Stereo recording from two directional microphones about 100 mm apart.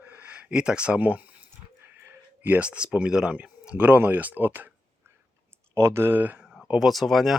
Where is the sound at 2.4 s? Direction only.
15° right (ahead or behind).